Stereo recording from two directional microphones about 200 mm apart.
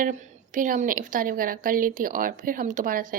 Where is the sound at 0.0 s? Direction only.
40° right (ahead or behind).